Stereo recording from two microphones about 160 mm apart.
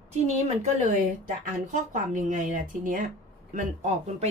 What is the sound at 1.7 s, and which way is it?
Speech, 50° right (ahead or behind).